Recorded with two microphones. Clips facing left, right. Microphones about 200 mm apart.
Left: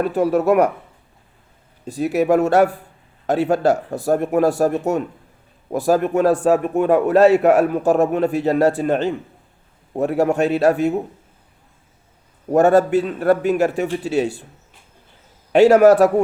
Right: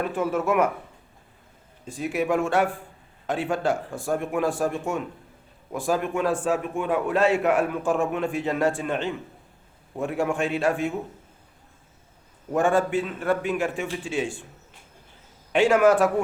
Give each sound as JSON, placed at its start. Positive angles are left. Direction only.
{"t": 0.0, "sound": "a man's voice", "side_deg": 40}
{"t": 1.8, "sound": "a man's voice", "side_deg": 40}
{"t": 12.5, "sound": "a man's voice", "side_deg": 40}
{"t": 15.5, "sound": "a man's voice", "side_deg": 40}